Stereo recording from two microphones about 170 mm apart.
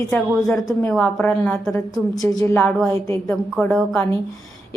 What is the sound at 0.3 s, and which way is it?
Speech, centre (ahead or behind).